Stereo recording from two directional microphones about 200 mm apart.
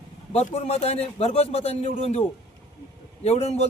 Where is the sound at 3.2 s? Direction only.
30° left (ahead or behind).